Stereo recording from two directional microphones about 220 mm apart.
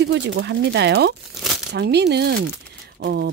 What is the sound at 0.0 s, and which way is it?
Speech, 50° right (ahead or behind).